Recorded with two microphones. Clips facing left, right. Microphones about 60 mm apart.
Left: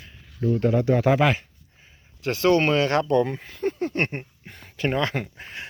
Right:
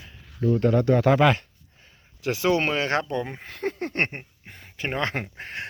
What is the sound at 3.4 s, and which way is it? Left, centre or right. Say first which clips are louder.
Speech: left 3 dB; right.